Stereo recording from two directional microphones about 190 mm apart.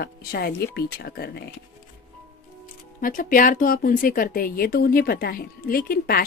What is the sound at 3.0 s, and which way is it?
Speech, 45° left (ahead or behind).